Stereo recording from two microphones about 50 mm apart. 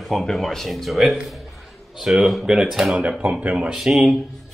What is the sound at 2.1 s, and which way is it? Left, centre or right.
Speech, centre.